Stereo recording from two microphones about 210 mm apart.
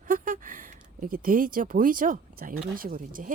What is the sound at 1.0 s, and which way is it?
Speech, 40° right (ahead or behind).